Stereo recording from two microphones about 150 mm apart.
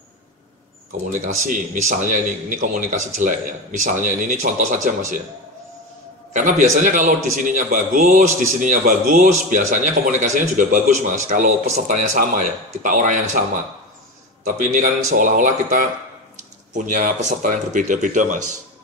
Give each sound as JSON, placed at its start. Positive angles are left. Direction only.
{"t": 1.1, "sound": "a man's voice", "side_deg": -55}
{"t": 6.3, "sound": "a man's voice", "side_deg": -60}
{"t": 14.4, "sound": "a man's voice", "side_deg": -60}